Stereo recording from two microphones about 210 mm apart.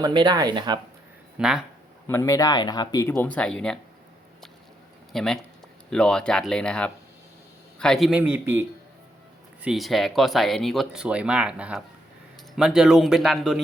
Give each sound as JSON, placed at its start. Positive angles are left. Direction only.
{"t": 0.0, "sound": "speech", "side_deg": -20}
{"t": 1.4, "sound": "speech", "side_deg": -5}
{"t": 2.0, "sound": "speech", "side_deg": 10}
{"t": 5.1, "sound": "speech", "side_deg": 5}